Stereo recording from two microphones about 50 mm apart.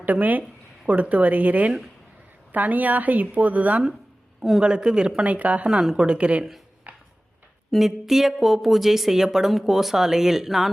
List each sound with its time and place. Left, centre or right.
0.0 s a woman's voice: right
4.4 s a man's voice: centre
4.6 s speech: centre
5.6 s a woman's voice: centre
6.0 s speech: right
6.9 s tick-tock: right
7.7 s a woman's voice: centre